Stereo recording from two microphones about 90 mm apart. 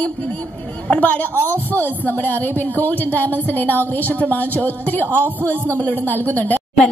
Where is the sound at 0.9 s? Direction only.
20° left (ahead or behind).